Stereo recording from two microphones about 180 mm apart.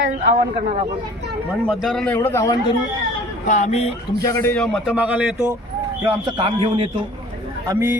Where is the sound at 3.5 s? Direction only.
40° left (ahead or behind).